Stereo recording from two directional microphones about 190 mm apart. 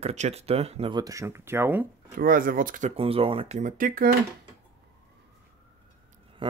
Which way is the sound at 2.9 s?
30° right (ahead or behind).